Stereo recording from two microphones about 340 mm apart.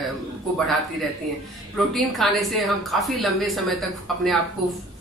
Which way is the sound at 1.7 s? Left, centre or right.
Centre.